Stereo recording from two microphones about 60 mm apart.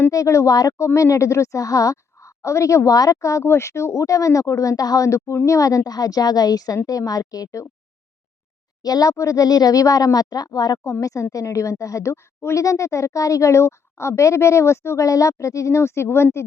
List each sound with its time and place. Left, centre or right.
0.1 s speech: left
3.4 s speech: left
3.9 s speech: left
5.5 s speech: left
8.8 s speech: left
9.1 s speech: left
11.0 s speech: left
12.6 s speech: left